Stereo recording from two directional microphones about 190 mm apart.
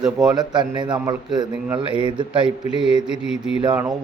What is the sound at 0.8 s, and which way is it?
Speech, 25° right (ahead or behind).